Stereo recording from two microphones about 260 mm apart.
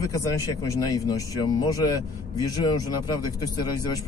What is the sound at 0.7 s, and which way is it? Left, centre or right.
A man's voice, centre.